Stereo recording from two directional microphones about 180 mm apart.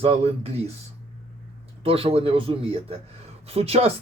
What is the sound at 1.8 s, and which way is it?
Speech, 30° right (ahead or behind).